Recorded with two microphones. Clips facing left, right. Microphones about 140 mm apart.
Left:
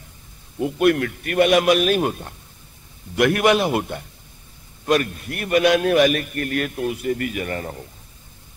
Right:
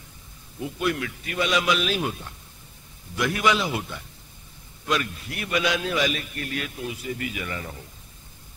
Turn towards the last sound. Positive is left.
turn(degrees=50)  # may be behind; listen again after turning